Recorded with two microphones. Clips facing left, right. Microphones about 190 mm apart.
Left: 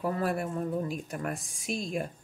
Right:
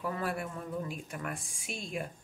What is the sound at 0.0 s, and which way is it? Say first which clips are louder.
A woman's voice: left 5 dB; 40° left (ahead or behind).